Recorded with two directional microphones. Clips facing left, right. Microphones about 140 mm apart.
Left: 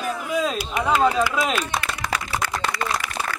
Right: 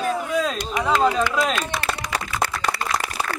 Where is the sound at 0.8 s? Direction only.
5° left (ahead or behind).